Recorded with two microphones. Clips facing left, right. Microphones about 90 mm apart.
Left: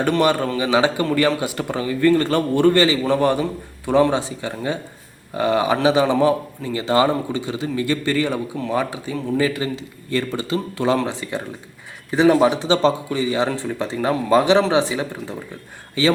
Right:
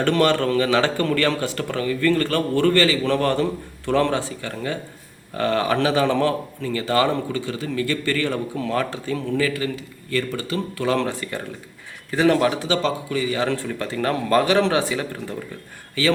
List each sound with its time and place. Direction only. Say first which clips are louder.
0.0 s a man's voice: left 1 dB; 10° left (ahead or behind)
9.4 s a man's voice: left 2 dB; 25° left (ahead or behind)